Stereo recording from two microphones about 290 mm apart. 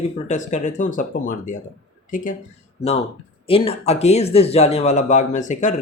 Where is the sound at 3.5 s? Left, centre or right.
Centre.